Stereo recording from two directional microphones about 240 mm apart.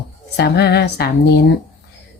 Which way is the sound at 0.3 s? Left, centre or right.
Left.